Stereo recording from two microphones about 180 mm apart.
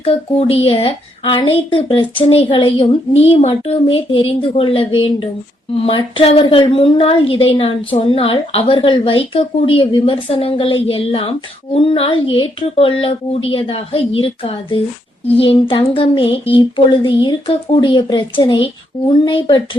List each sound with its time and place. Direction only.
0.0 s a woman's voice: 30° left (ahead or behind)